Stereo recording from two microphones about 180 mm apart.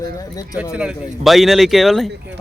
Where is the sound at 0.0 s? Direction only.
20° left (ahead or behind).